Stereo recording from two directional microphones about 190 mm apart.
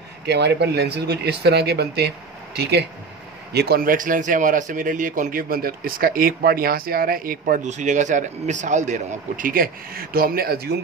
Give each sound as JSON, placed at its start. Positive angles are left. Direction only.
{"t": 0.3, "sound": "speech", "side_deg": -60}